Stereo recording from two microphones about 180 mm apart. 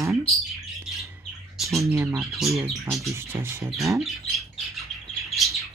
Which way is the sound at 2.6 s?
15° right (ahead or behind).